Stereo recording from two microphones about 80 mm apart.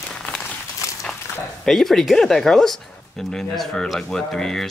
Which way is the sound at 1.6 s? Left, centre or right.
Centre.